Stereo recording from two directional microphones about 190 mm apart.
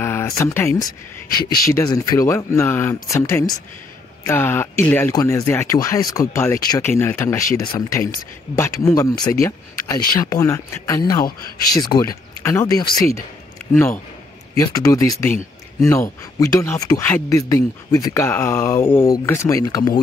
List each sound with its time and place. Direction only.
0.0 s speech: 15° left (ahead or behind)
1.4 s speech: 55° left (ahead or behind)
1.7 s speech: 15° left (ahead or behind)